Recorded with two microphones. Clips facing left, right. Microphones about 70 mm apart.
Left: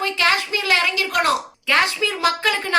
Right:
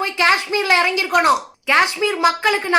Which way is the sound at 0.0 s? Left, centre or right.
Right.